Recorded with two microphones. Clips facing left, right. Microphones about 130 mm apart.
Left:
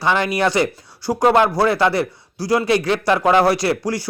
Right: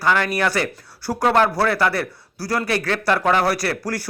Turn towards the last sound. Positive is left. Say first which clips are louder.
# left 4 dB
turn(degrees=15)  # may be behind; listen again after turning